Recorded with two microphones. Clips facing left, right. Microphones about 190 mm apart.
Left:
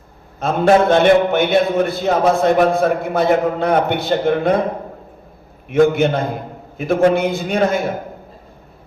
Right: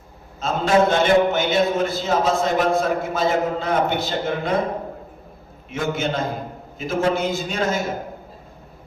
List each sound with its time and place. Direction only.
0.3 s a man's voice: 55° left (ahead or behind)
5.7 s a man's voice: 60° left (ahead or behind)